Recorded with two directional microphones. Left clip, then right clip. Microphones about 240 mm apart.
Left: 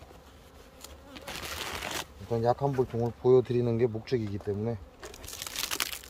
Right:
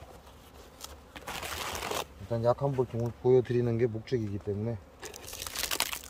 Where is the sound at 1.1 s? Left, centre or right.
Centre.